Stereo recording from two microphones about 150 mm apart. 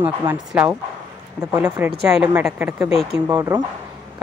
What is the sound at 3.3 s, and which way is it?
Speech, 25° right (ahead or behind).